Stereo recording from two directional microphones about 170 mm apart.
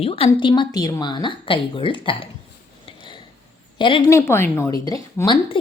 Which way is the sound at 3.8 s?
30° left (ahead or behind).